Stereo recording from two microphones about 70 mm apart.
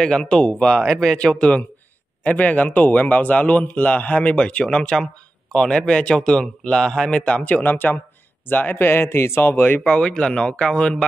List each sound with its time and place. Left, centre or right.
0.0 s a man's voice: centre; by 9.8 s left
9.8 s speech: centre